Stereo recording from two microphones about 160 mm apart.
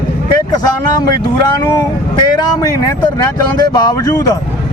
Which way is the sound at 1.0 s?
25° left (ahead or behind).